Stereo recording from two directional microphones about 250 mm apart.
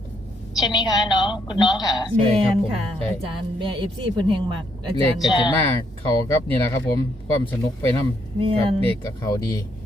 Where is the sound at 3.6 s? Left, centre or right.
Centre.